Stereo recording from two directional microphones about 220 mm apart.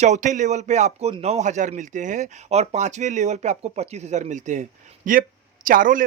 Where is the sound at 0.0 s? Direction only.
30° right (ahead or behind).